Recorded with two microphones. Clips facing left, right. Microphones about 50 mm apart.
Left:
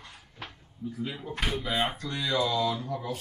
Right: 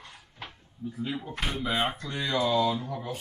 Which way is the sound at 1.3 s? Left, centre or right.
Centre.